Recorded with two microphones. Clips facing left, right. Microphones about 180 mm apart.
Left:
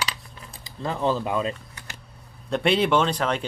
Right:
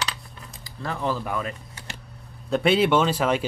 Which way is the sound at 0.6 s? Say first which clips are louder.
Left 3 dB; 20° left (ahead or behind).